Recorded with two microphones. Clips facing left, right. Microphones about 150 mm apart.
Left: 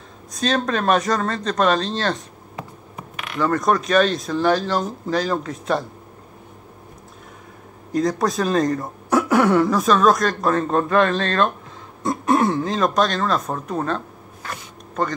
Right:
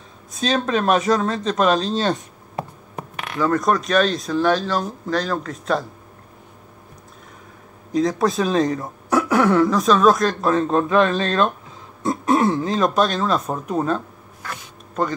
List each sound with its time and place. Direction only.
0.3 s speech: centre (ahead or behind)
3.3 s speech: centre (ahead or behind)
4.6 s speech: 15° left (ahead or behind)
5.0 s speech: 5° left (ahead or behind)
7.9 s speech: centre (ahead or behind)